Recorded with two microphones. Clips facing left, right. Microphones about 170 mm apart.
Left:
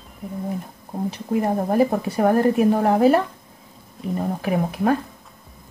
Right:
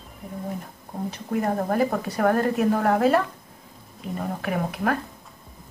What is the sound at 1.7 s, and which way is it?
Speech, 25° left (ahead or behind).